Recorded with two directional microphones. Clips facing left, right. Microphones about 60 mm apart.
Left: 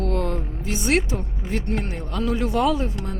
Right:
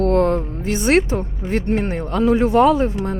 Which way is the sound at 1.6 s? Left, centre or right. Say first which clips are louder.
Right 7 dB; right.